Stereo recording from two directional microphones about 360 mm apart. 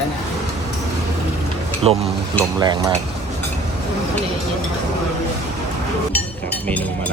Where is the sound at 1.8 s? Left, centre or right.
Centre.